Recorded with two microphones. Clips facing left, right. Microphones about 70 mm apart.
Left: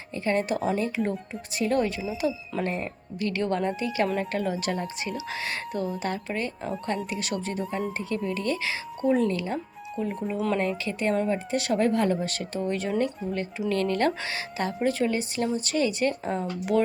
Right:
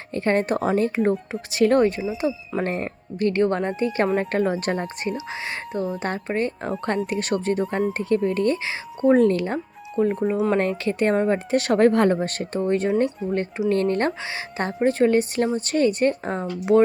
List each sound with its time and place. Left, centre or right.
0.1 s speech: right
1.3 s speech: right
2.2 s speech: right
2.6 s speech: right
5.1 s a woman's voice: right
11.5 s a woman's voice: right